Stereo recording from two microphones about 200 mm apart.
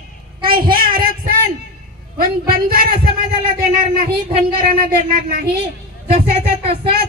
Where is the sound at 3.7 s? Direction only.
45° right (ahead or behind).